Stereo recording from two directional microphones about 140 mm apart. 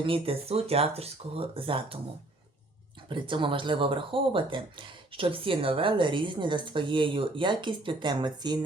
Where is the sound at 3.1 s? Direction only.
35° right (ahead or behind).